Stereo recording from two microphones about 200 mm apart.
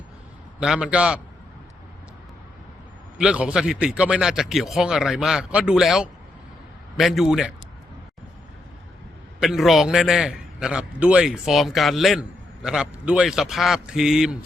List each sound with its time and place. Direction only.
0.6 s a man's voice: 5° right (ahead or behind)
3.2 s a man's voice: 5° right (ahead or behind)
9.4 s a man's voice: centre (ahead or behind)